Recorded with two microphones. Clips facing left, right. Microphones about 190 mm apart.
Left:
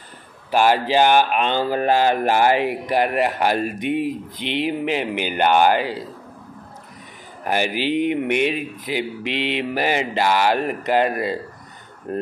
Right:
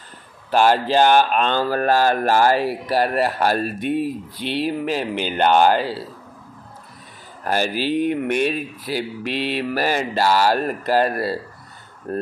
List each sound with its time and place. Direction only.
0.5 s speech: 10° left (ahead or behind)
7.4 s speech: 15° left (ahead or behind)